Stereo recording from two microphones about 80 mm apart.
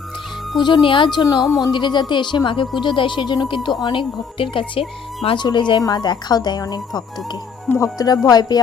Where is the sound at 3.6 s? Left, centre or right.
Left.